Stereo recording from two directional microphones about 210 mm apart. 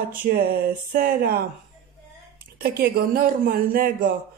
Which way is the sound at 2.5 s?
45° right (ahead or behind).